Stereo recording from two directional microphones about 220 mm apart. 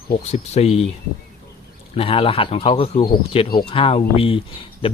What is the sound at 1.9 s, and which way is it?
Speech, 25° left (ahead or behind).